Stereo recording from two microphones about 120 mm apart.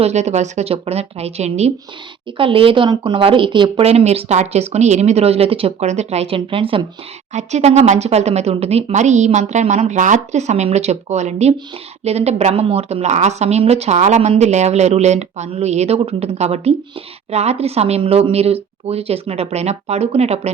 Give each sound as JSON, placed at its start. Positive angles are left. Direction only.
{"t": 0.0, "sound": "speech", "side_deg": -70}
{"t": 2.4, "sound": "speech", "side_deg": -45}
{"t": 3.8, "sound": "speech", "side_deg": -60}
{"t": 7.3, "sound": "speech", "side_deg": -70}
{"t": 12.6, "sound": "speech", "side_deg": -60}